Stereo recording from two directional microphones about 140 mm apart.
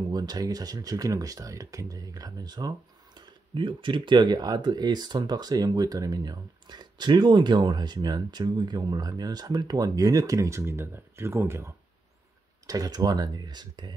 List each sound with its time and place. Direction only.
0.1 s speech: 30° right (ahead or behind)